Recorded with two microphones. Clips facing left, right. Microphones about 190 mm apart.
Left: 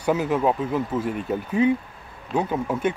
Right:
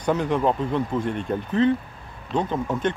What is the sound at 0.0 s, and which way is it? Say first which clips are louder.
Speech: even; 5° left (ahead or behind).